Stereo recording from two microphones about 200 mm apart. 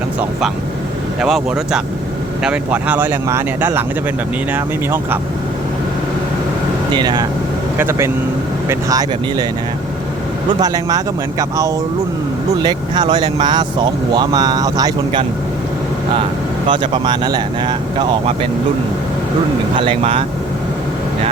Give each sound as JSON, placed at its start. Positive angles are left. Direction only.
{"t": 1.2, "sound": "speech", "side_deg": 0}
{"t": 6.9, "sound": "speech", "side_deg": -20}
{"t": 10.6, "sound": "speech", "side_deg": -20}
{"t": 16.6, "sound": "speech", "side_deg": -25}
{"t": 19.7, "sound": "speech", "side_deg": -25}